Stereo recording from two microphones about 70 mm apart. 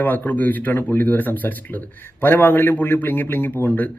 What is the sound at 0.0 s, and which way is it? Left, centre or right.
A man's voice, left.